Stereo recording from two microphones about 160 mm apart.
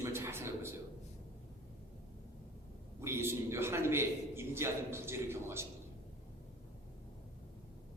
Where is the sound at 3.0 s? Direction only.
15° right (ahead or behind).